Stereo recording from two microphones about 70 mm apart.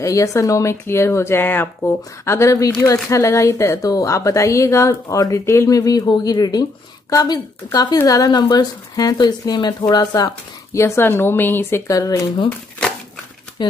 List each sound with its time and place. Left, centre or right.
0.0 s speech: left
3.8 s speech: left
5.0 s speech: left
5.7 s speech: left
10.7 s speech: left
11.0 s speech: left
11.9 s speech: left
13.6 s speech: left